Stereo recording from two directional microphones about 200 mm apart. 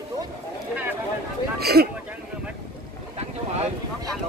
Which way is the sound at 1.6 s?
50° right (ahead or behind).